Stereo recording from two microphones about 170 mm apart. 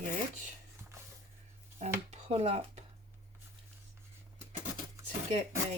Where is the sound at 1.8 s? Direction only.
40° right (ahead or behind).